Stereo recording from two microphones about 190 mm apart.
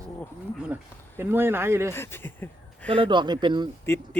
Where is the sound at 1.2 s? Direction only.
10° right (ahead or behind).